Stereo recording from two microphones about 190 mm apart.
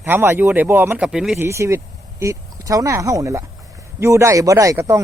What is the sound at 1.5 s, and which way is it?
Speech, 15° right (ahead or behind).